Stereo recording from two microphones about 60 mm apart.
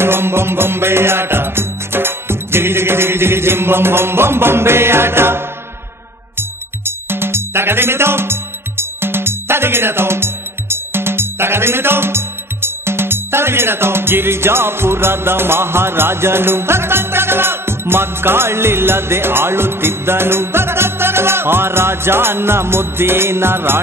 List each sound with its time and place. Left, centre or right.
0.0 s music: right